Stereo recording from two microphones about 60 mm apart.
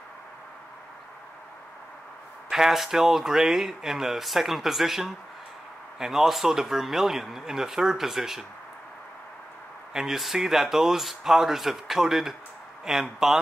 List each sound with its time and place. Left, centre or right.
2.5 s speech: centre
9.9 s speech: centre